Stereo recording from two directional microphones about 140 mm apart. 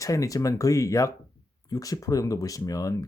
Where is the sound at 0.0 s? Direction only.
25° left (ahead or behind).